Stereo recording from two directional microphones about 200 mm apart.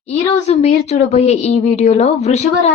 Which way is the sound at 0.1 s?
30° left (ahead or behind).